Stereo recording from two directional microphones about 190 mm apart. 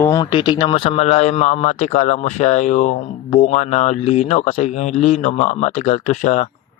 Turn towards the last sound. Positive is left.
turn(degrees=35)  # may be behind; listen again after turning